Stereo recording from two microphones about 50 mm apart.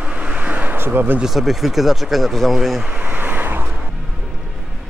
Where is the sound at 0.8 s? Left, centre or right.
Right.